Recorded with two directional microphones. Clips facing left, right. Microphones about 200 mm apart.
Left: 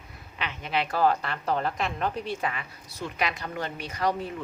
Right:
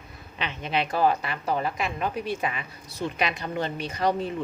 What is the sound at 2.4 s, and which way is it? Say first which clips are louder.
A woman's voice: right 1 dB; 20° right (ahead or behind).